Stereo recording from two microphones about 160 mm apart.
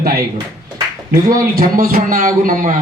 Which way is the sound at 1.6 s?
65° right (ahead or behind).